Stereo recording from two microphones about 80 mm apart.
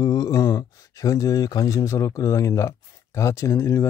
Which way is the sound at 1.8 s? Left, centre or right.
Left.